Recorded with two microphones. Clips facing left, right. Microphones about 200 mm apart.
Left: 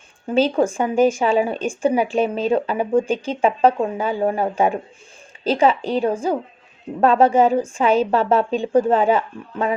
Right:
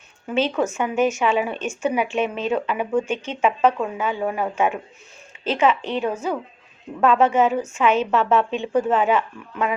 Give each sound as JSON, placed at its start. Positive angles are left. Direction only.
{"t": 0.3, "sound": "a woman's voice", "side_deg": 30}